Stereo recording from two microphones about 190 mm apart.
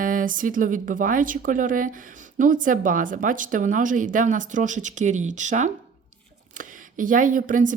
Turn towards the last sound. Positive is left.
turn(degrees=-45)  # may be behind; listen again after turning